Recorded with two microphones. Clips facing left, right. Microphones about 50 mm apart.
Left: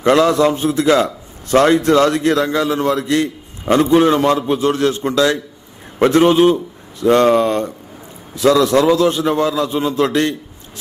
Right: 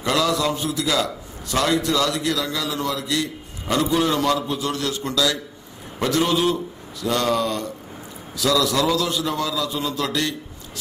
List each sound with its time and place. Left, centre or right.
0.0 s a man's voice: left